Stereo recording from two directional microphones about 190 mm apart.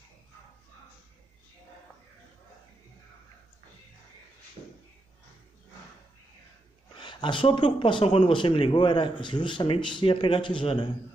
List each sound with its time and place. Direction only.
7.0 s speech: 25° left (ahead or behind)